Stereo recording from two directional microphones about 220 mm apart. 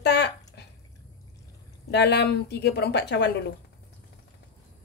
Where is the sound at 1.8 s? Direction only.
50° left (ahead or behind).